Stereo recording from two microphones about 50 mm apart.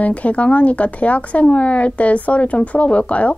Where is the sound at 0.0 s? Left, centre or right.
Left.